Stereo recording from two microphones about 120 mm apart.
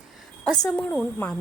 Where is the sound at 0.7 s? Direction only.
10° left (ahead or behind).